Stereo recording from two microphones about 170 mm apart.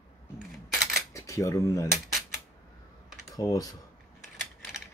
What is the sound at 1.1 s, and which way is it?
Speech, 20° left (ahead or behind).